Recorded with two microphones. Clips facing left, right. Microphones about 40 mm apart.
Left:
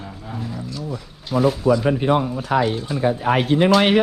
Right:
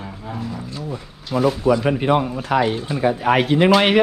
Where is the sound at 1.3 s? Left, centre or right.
Centre.